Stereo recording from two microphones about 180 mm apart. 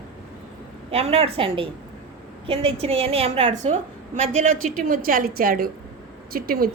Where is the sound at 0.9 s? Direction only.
35° right (ahead or behind).